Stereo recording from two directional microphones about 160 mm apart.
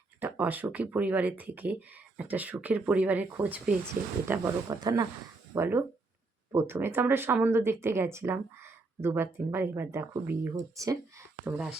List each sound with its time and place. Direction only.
0.2 s speech: 10° right (ahead or behind)
4.3 s speech: 20° right (ahead or behind)